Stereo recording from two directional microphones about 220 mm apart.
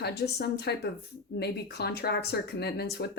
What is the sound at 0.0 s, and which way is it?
Speech, 50° left (ahead or behind).